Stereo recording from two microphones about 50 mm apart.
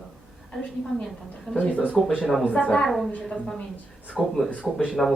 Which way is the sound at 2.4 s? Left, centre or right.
Left.